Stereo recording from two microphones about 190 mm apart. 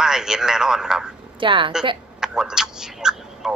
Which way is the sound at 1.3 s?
25° right (ahead or behind).